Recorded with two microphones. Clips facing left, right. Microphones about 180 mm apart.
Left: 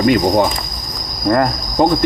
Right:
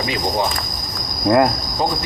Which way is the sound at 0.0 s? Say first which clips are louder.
Left 9 dB; 55° left (ahead or behind).